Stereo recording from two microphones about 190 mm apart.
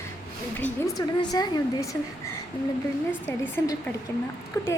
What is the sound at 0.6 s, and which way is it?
A woman's voice, 20° left (ahead or behind).